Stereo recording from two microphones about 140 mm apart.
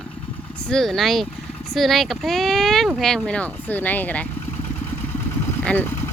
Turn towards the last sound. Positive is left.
turn(degrees=10)  # may be behind; listen again after turning